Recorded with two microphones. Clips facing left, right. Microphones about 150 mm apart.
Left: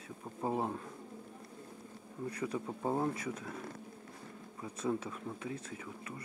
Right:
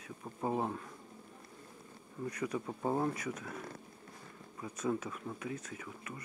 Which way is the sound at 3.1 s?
30° left (ahead or behind).